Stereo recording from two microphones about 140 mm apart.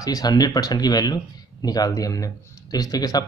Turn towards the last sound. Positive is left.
turn(degrees=25)  # may be behind; listen again after turning